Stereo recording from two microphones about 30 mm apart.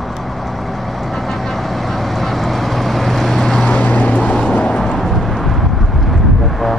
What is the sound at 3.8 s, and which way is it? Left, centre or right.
Vehicle, left.